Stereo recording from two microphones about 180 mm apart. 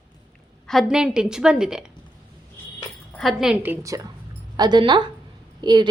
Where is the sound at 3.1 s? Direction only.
Centre (ahead or behind).